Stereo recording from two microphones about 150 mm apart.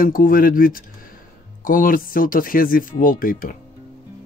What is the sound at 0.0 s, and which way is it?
Speech, 70° left (ahead or behind).